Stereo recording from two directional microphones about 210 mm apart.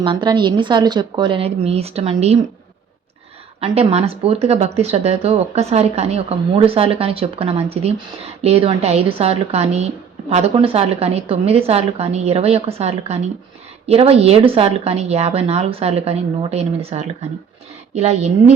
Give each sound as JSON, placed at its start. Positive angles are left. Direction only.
{"t": 0.0, "sound": "speech", "side_deg": -20}
{"t": 3.6, "sound": "a woman's voice", "side_deg": -30}